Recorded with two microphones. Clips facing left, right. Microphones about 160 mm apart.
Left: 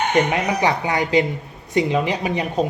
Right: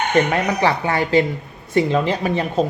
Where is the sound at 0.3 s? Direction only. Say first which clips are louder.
Right 1 dB; 15° left (ahead or behind).